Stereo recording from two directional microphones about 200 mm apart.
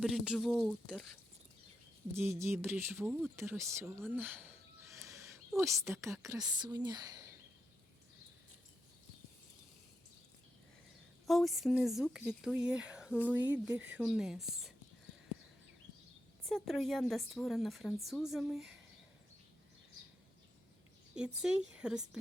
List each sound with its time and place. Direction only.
0.0 s speech: centre (ahead or behind)
2.1 s speech: 15° right (ahead or behind)
3.6 s speech: 15° right (ahead or behind)
4.1 s bird: 10° right (ahead or behind)
5.9 s speech: 15° right (ahead or behind)
11.3 s speech: centre (ahead or behind)
16.5 s speech: centre (ahead or behind)
21.2 s speech: 5° right (ahead or behind)